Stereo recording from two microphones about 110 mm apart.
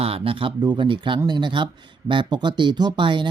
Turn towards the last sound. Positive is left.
turn(degrees=-45)  # may be behind; listen again after turning